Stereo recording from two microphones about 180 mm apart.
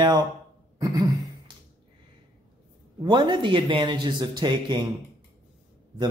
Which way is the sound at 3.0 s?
25° right (ahead or behind).